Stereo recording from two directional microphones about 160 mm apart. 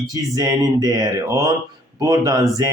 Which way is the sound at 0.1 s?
25° right (ahead or behind).